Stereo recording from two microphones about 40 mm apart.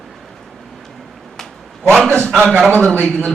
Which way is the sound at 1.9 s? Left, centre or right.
Centre.